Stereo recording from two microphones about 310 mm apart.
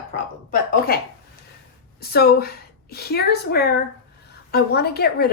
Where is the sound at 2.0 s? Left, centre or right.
Left.